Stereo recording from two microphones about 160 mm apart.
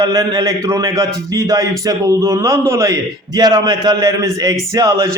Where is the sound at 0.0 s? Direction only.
25° right (ahead or behind).